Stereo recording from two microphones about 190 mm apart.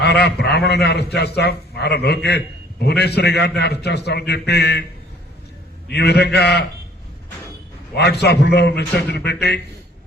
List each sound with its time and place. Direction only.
0.0 s a man's voice: 60° left (ahead or behind)
5.9 s a man's voice: 60° left (ahead or behind)
7.9 s a man's voice: 60° left (ahead or behind)